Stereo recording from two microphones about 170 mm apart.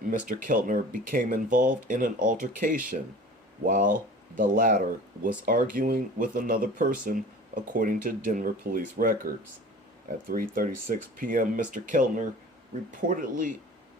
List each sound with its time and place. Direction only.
0.3 s speech: 50° right (ahead or behind)